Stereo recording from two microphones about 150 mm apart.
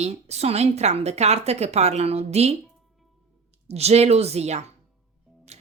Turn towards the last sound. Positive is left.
turn(degrees=-45)  # may be behind; listen again after turning